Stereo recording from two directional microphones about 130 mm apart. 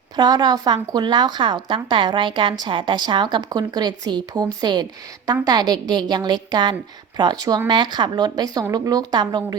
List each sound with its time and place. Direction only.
0.2 s speech: 30° right (ahead or behind)